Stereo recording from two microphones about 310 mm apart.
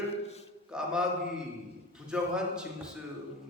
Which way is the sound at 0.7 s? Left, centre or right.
Centre.